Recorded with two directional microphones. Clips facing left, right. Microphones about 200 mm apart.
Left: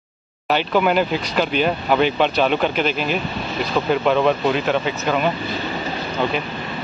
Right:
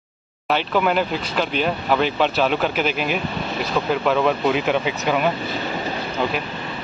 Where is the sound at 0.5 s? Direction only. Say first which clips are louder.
Left 2 dB; centre (ahead or behind).